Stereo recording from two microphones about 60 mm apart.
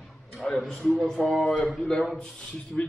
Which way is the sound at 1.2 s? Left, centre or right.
Centre.